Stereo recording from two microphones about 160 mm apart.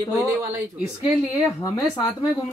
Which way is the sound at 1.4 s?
20° left (ahead or behind).